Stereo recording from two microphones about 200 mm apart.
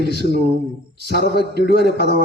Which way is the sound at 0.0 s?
55° left (ahead or behind).